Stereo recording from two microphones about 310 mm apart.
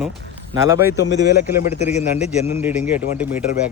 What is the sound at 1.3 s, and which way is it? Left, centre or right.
Speech, left.